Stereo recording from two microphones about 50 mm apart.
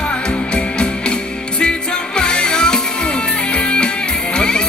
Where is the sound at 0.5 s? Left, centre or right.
Centre.